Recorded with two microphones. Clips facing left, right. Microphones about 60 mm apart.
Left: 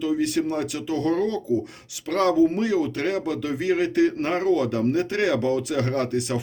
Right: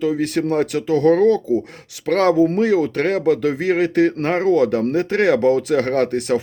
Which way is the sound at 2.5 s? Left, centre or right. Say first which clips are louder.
Right 6 dB; right.